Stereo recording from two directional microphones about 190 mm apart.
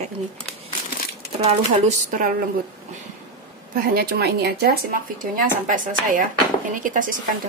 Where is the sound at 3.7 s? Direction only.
50° right (ahead or behind).